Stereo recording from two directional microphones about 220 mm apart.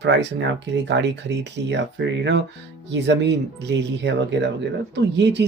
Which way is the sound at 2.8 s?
50° right (ahead or behind).